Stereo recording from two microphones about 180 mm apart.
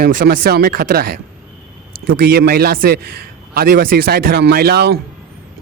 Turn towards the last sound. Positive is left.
turn(degrees=-65)  # may be behind; listen again after turning